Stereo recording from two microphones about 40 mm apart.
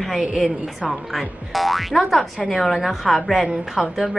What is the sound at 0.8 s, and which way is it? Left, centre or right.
A woman's voice, centre.